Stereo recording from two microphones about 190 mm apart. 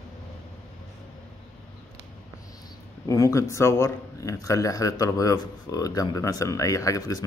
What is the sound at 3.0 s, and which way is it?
Speech, 20° left (ahead or behind).